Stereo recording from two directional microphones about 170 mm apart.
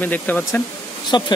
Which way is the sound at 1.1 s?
25° left (ahead or behind).